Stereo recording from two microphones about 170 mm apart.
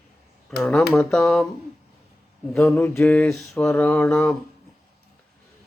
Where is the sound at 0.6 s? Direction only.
5° left (ahead or behind).